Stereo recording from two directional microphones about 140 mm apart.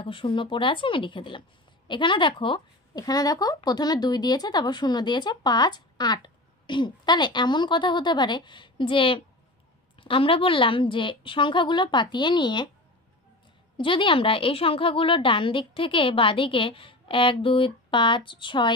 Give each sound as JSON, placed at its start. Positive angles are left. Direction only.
{"t": 0.0, "sound": "speech", "side_deg": 40}
{"t": 13.7, "sound": "speech", "side_deg": 35}